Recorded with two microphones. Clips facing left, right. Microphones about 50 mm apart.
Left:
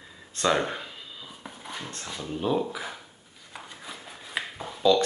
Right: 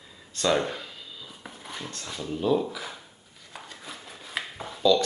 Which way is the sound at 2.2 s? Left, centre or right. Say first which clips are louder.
Right 2 dB; left.